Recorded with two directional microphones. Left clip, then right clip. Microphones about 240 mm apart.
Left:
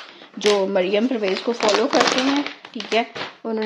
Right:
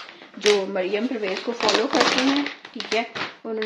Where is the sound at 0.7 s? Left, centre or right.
Left.